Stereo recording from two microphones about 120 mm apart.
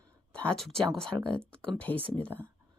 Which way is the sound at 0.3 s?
5° left (ahead or behind).